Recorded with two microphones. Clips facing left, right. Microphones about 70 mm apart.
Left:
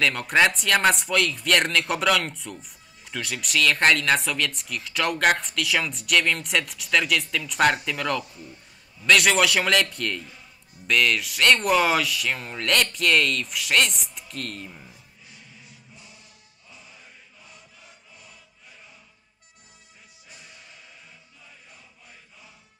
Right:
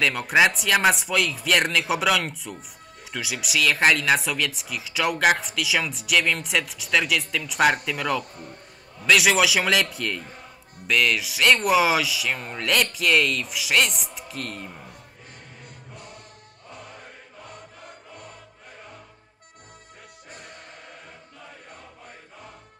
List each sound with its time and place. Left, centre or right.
0.0 s speech: centre
8.2 s a sound: right
9.0 s speech: centre
10.2 s music: right
10.9 s speech: centre
14.7 s speech: right
15.9 s music: right
20.2 s music: right